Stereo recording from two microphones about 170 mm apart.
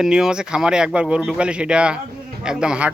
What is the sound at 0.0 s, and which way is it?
Speech, 5° right (ahead or behind).